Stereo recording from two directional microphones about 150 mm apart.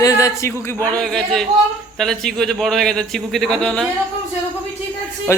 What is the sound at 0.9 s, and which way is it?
A man's voice, 5° left (ahead or behind).